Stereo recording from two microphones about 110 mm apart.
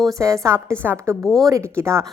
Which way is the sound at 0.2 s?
30° right (ahead or behind).